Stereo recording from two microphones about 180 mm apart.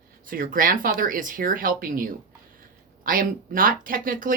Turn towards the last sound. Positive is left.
turn(degrees=-50)  # may be behind; listen again after turning